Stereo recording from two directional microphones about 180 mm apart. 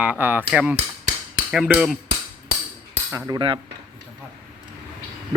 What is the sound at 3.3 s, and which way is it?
Speech, 25° right (ahead or behind).